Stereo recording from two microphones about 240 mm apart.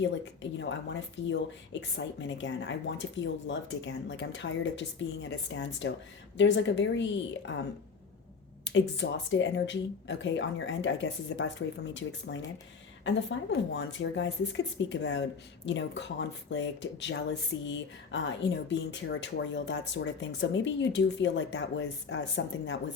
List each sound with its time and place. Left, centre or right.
0.6 s speech: left
8.6 s speech: left